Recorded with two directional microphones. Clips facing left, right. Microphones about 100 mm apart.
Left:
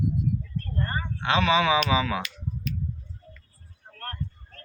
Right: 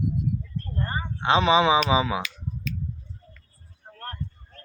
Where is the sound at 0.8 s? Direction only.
15° right (ahead or behind).